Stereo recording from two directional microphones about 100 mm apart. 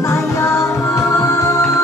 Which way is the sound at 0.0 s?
25° left (ahead or behind).